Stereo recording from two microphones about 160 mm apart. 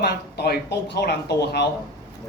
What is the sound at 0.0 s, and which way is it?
Speech, 90° left.